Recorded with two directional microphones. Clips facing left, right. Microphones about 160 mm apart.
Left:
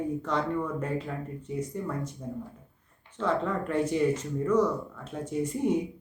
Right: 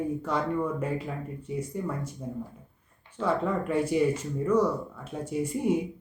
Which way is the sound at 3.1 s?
10° right (ahead or behind).